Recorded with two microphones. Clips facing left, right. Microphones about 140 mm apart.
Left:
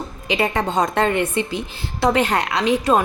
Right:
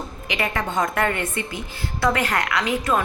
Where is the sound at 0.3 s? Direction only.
30° left (ahead or behind).